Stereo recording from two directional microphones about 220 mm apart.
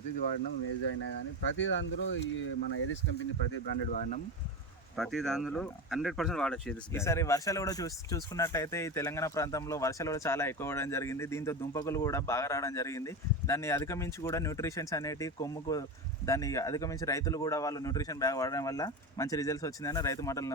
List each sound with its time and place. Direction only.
0.9 s speech: 60° left (ahead or behind)
4.9 s speech: centre (ahead or behind)